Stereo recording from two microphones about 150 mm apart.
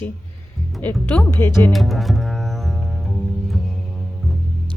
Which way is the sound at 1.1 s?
10° left (ahead or behind).